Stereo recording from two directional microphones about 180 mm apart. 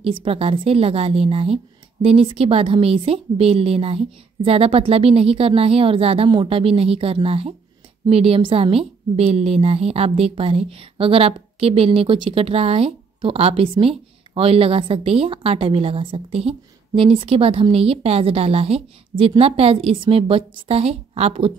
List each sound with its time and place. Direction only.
0.0 s a woman's voice: 30° right (ahead or behind)